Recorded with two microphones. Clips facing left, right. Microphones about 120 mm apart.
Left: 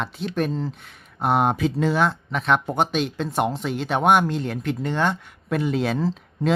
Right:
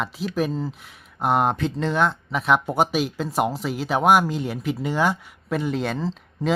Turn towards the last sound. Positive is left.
turn(degrees=0)  # may be behind; listen again after turning